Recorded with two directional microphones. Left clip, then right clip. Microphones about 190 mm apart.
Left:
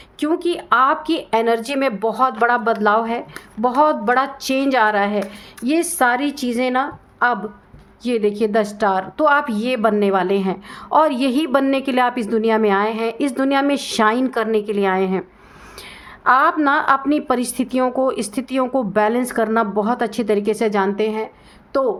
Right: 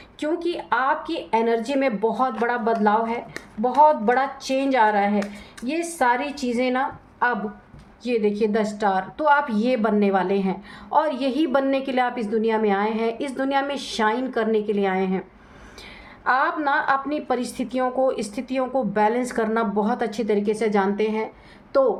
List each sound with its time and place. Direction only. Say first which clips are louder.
0.2 s speech: left 5 dB; 40° left (ahead or behind)
8.0 s a woman's voice: left 3 dB; 40° left (ahead or behind)
16.2 s a woman's voice: left 6 dB; 40° left (ahead or behind)